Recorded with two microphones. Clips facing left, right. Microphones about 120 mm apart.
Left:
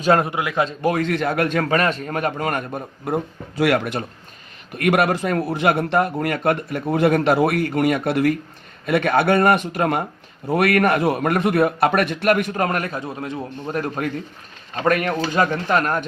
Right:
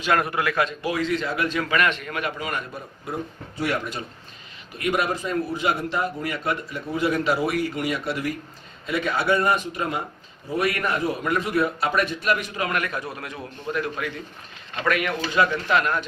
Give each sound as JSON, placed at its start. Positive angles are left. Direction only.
{"t": 0.0, "sound": "a man's voice", "side_deg": 30}
{"t": 0.8, "sound": "a man's voice", "side_deg": 50}
{"t": 3.6, "sound": "a man's voice", "side_deg": 85}
{"t": 13.7, "sound": "a man's voice", "side_deg": 45}